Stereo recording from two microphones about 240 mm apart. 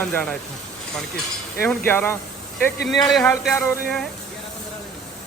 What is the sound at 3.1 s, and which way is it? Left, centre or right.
Music, centre.